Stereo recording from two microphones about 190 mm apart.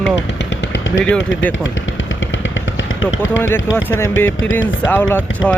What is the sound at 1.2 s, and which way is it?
Speech, 75° left (ahead or behind).